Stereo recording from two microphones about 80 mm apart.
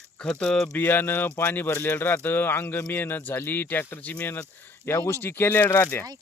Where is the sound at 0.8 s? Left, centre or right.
Left.